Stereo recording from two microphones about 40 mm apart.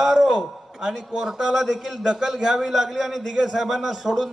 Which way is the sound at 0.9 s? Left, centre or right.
Centre.